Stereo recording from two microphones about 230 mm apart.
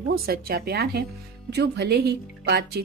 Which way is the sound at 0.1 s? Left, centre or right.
Right.